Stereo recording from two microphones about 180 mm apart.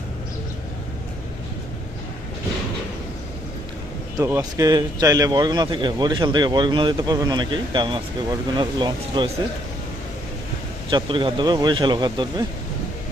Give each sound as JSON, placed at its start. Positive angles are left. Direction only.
{"t": 4.2, "sound": "speech", "side_deg": -20}
{"t": 10.8, "sound": "speech", "side_deg": -30}